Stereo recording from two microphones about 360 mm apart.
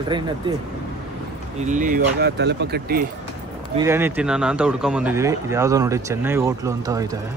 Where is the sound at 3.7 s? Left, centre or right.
Centre.